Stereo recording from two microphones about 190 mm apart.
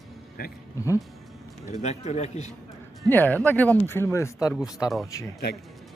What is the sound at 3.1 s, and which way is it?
Speech, 10° left (ahead or behind).